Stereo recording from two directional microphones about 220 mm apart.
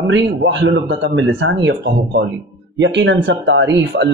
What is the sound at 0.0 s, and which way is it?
Speech, 55° right (ahead or behind).